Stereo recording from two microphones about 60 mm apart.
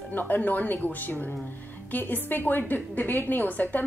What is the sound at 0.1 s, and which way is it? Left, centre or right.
A woman's voice, left.